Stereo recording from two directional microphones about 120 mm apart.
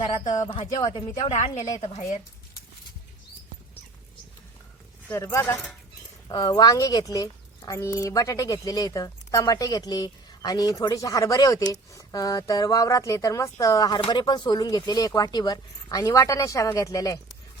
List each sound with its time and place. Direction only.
0.6 s speech: 70° left (ahead or behind)
1.5 s speech: 25° left (ahead or behind)
1.8 s speech: 65° left (ahead or behind)
5.1 s speech: 25° left (ahead or behind)
6.2 s speech: 35° left (ahead or behind)